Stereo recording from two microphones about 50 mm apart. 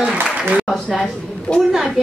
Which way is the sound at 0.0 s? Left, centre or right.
Centre.